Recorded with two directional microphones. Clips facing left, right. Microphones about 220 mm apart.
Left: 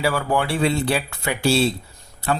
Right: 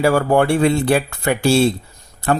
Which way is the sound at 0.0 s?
50° right (ahead or behind).